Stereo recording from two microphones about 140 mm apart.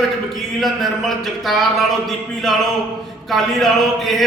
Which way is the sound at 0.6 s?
Centre (ahead or behind).